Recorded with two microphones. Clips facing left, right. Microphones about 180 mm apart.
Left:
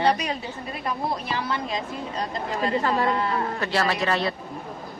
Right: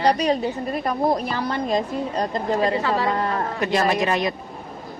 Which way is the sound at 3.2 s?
45° right (ahead or behind).